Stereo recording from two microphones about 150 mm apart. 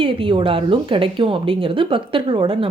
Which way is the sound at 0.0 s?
35° right (ahead or behind).